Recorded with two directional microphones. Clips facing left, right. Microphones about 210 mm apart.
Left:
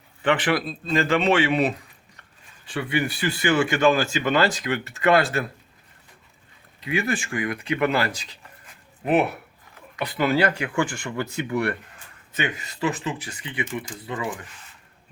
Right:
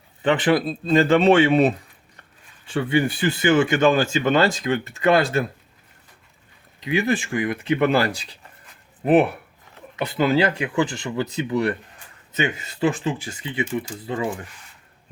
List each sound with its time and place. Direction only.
0.2 s speech: 25° right (ahead or behind)
2.6 s speech: 25° right (ahead or behind)
6.8 s speech: 20° right (ahead or behind)